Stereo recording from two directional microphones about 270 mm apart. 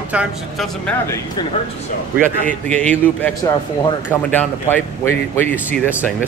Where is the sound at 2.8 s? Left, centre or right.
Centre.